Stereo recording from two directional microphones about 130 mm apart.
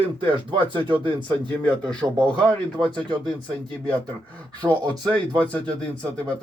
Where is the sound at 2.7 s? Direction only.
35° right (ahead or behind).